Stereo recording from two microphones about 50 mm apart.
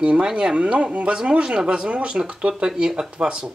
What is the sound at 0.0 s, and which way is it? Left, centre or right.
Speech, centre.